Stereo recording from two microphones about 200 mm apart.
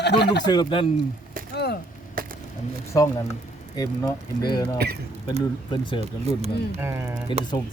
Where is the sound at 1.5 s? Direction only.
50° left (ahead or behind).